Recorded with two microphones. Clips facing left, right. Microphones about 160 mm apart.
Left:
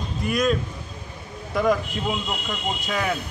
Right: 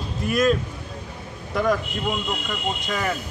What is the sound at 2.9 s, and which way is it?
Speech, 5° left (ahead or behind).